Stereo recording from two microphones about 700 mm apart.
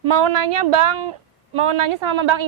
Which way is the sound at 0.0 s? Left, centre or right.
Right.